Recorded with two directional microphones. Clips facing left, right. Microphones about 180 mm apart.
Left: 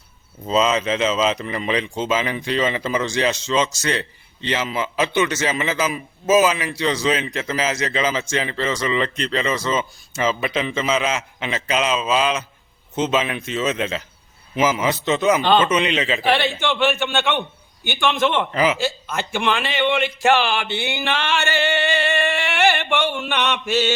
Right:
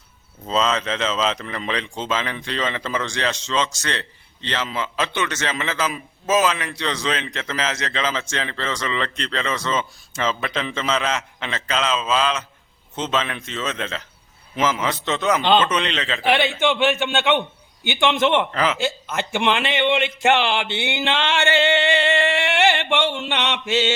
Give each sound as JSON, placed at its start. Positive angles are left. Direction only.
{"t": 0.4, "sound": "speech", "side_deg": 5}
{"t": 16.2, "sound": "a man's voice", "side_deg": -20}
{"t": 18.5, "sound": "speech", "side_deg": 10}
{"t": 18.8, "sound": "a man's voice", "side_deg": -20}